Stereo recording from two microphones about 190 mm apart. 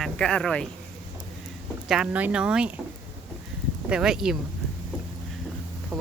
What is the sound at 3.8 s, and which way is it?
Speech, 5° right (ahead or behind).